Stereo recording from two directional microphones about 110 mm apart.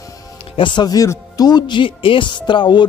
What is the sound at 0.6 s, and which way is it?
Speech, 45° left (ahead or behind).